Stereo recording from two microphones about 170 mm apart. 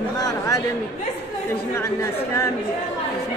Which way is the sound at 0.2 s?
20° left (ahead or behind).